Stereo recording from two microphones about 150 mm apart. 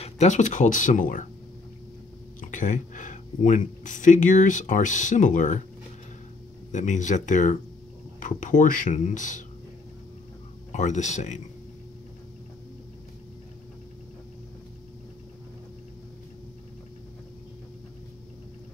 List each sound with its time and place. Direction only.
0.0 s speech: 50° left (ahead or behind)
2.4 s speech: 60° left (ahead or behind)
6.7 s speech: 55° left (ahead or behind)
10.7 s speech: 50° left (ahead or behind)